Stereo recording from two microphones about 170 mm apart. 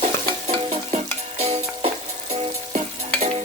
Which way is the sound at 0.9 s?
40° right (ahead or behind).